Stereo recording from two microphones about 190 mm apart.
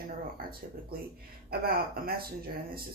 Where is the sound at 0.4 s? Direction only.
50° right (ahead or behind).